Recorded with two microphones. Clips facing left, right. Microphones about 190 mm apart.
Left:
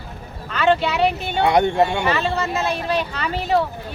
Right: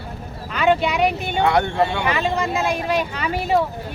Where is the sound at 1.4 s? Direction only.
20° left (ahead or behind).